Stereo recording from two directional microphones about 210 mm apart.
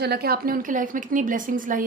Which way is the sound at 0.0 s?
50° right (ahead or behind).